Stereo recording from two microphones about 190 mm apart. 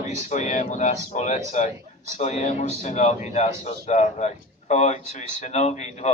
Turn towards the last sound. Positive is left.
turn(degrees=35)  # may be behind; listen again after turning